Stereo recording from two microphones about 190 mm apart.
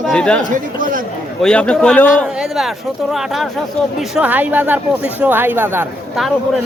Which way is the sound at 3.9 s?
5° right (ahead or behind).